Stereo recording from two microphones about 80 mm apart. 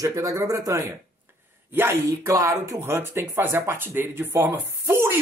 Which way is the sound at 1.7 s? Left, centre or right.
Right.